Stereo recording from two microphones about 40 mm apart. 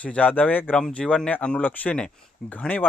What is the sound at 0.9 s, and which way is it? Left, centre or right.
Speech, left.